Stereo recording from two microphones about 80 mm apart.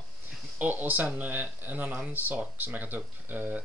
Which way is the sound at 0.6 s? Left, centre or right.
Right.